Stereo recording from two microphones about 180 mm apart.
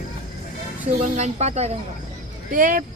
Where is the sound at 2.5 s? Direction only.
50° right (ahead or behind).